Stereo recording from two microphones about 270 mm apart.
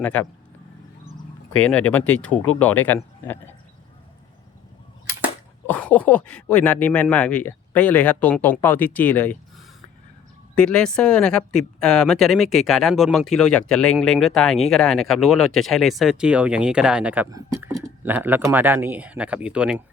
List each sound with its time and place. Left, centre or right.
0.0 s speech: centre
1.5 s speech: centre
5.6 s speech: centre